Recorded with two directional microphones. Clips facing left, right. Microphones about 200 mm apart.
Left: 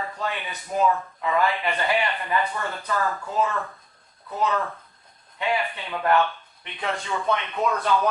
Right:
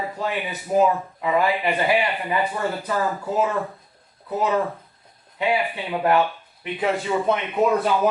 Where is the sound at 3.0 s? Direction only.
25° right (ahead or behind).